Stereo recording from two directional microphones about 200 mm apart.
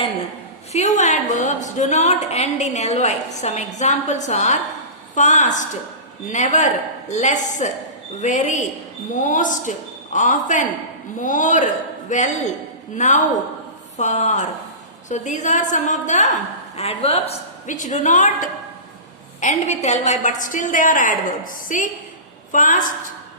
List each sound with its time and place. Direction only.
0.7 s a woman's voice: 35° left (ahead or behind)